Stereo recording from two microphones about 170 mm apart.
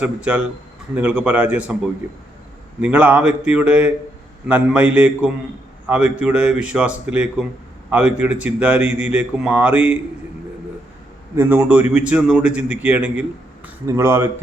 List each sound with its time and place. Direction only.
0.0 s a man's voice: 5° right (ahead or behind)
11.3 s a man's voice: 10° right (ahead or behind)